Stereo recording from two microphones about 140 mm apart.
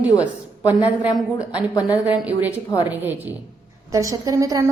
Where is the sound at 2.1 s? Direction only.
10° right (ahead or behind).